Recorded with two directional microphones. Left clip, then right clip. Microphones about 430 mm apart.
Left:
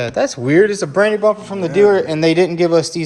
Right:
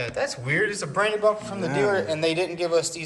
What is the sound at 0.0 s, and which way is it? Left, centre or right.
A man's voice, centre.